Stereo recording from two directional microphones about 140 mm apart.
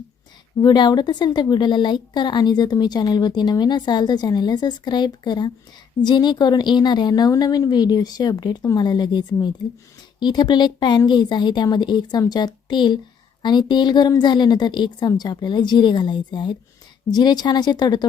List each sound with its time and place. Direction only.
0.6 s a woman's voice: 30° left (ahead or behind)